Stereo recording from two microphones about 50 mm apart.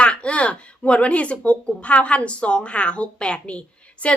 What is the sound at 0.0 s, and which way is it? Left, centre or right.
A woman's voice, left.